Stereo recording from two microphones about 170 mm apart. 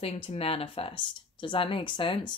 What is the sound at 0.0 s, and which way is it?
Speech, 35° left (ahead or behind).